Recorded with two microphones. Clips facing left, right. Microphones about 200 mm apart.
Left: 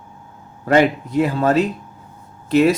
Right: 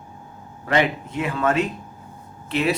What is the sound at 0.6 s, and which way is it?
Speech, 40° left (ahead or behind).